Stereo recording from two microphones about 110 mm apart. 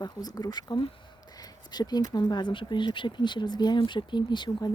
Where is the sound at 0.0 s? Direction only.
40° left (ahead or behind).